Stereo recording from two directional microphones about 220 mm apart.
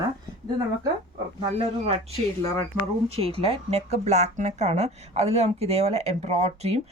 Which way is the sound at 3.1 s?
25° right (ahead or behind).